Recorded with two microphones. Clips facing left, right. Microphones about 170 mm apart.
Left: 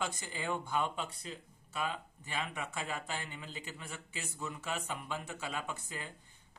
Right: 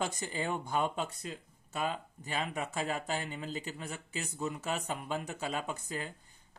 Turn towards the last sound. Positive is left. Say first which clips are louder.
# right 4 dB
turn(degrees=-40)  # may be behind; listen again after turning